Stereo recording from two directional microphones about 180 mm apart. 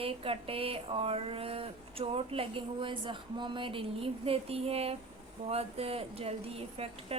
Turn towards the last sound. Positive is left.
turn(degrees=-35)  # may be behind; listen again after turning